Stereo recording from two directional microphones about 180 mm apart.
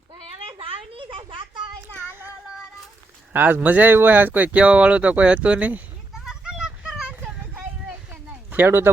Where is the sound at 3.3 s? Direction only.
10° right (ahead or behind).